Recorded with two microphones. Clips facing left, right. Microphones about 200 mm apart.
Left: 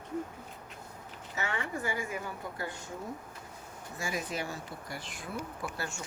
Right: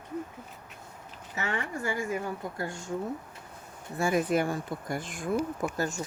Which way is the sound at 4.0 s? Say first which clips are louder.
Right 10 dB; 55° right (ahead or behind).